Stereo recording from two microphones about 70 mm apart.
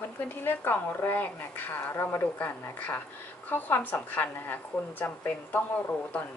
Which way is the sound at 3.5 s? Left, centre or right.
Left.